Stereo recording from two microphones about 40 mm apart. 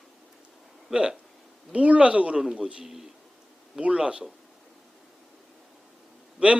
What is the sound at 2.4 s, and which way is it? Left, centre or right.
Speech, centre.